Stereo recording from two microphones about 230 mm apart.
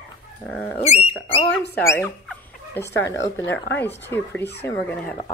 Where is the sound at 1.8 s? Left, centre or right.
Centre.